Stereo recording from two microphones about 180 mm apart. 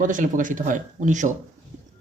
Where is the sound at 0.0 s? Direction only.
45° right (ahead or behind).